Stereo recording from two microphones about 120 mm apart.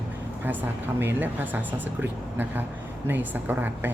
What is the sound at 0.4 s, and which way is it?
A woman's voice, 15° right (ahead or behind).